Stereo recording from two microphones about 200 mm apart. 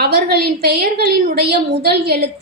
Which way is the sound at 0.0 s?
50° right (ahead or behind).